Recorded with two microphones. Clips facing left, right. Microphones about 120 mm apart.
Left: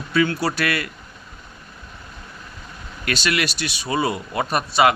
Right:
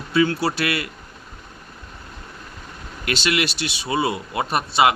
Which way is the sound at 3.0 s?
25° right (ahead or behind).